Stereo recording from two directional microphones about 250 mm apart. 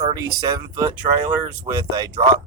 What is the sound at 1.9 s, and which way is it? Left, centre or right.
Speech, centre.